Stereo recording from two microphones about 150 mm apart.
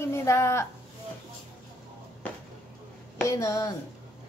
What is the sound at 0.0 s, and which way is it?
Speech, 15° left (ahead or behind).